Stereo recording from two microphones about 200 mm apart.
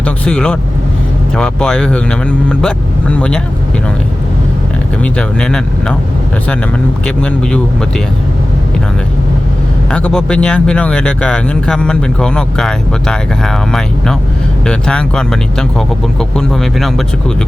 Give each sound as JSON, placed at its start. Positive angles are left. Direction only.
{"t": 0.0, "sound": "speech", "side_deg": 5}
{"t": 5.0, "sound": "speech", "side_deg": 5}
{"t": 7.2, "sound": "speech", "side_deg": 5}
{"t": 9.9, "sound": "speech", "side_deg": 5}